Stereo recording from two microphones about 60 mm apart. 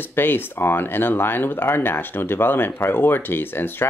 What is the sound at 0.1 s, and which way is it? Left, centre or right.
Speech, left.